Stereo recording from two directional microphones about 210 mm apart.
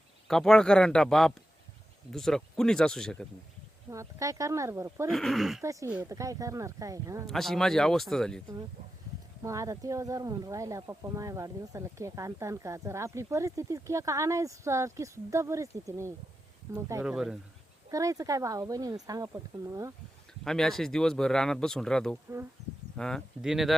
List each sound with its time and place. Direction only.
0.3 s speech: centre (ahead or behind)
3.8 s speech: 15° right (ahead or behind)
5.0 s speech: centre (ahead or behind)
5.6 s speech: 10° right (ahead or behind)
7.3 s speech: centre (ahead or behind)
9.4 s speech: 15° right (ahead or behind)
17.9 s speech: 15° right (ahead or behind)
20.4 s speech: centre (ahead or behind)